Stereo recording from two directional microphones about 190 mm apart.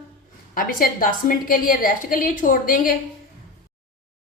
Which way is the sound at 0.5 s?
50° left (ahead or behind).